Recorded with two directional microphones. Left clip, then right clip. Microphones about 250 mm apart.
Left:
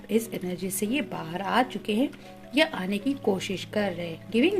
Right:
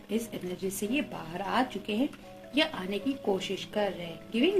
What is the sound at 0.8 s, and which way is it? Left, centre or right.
A woman's voice, left.